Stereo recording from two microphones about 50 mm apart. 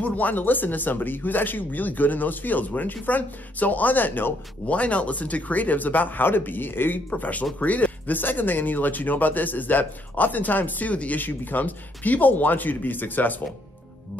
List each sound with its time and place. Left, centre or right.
0.0 s speech: left
4.6 s speech: left
7.1 s speech: left